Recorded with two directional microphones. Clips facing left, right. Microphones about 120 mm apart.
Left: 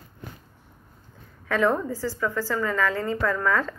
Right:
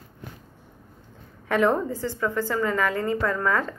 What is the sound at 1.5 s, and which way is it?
A woman's voice, 20° right (ahead or behind).